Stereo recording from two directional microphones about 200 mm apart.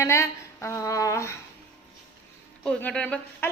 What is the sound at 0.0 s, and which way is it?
Speech, 15° left (ahead or behind).